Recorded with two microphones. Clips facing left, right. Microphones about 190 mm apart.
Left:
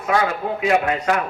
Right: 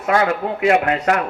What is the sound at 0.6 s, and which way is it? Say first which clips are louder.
Speech: right 2 dB; 65° right (ahead or behind).